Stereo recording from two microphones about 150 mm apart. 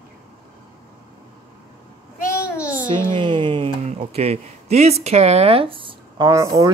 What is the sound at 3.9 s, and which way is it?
Speech, 45° right (ahead or behind).